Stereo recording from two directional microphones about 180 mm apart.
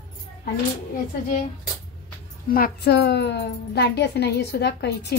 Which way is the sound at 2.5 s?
60° left (ahead or behind).